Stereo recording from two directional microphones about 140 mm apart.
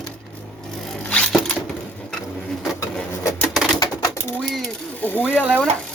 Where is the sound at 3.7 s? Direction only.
25° left (ahead or behind).